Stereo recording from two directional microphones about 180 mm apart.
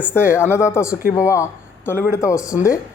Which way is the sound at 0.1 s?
15° left (ahead or behind).